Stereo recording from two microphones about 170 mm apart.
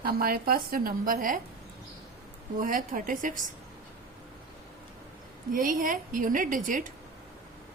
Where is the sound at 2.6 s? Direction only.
55° right (ahead or behind).